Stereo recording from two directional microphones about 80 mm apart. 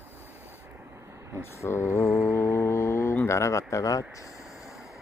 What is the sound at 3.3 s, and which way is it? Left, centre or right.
Speech, left.